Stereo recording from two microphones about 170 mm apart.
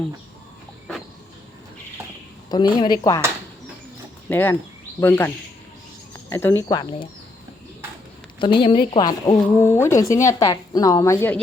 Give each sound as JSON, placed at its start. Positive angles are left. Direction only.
{"t": 2.5, "sound": "speech", "side_deg": 25}
{"t": 4.3, "sound": "speech", "side_deg": 10}
{"t": 6.3, "sound": "speech", "side_deg": 15}
{"t": 8.4, "sound": "speech", "side_deg": 30}